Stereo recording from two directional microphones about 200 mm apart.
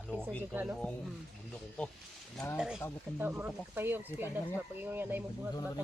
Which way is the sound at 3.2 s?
10° right (ahead or behind).